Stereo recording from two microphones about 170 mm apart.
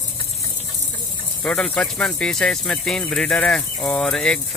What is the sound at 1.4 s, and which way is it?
Speech, 5° left (ahead or behind).